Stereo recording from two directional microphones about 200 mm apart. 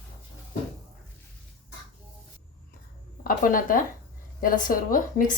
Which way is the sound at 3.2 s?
45° left (ahead or behind).